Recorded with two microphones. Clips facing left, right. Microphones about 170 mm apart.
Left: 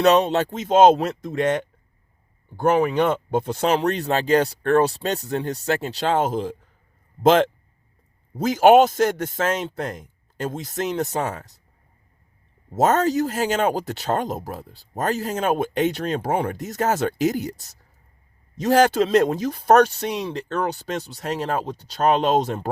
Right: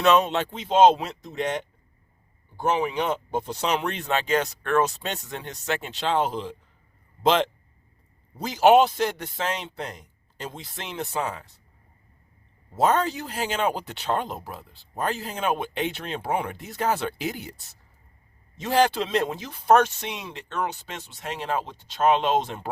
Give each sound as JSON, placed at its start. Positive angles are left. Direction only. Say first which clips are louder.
{"t": 0.0, "sound": "a man's voice", "louder": "left 4 dB", "side_deg": 40}
{"t": 3.8, "sound": "a man's voice", "louder": "left 5 dB", "side_deg": 35}
{"t": 12.7, "sound": "speech", "louder": "left 4 dB", "side_deg": 45}